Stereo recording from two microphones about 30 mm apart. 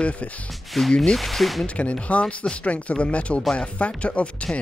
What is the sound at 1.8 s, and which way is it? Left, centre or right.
Speech, left.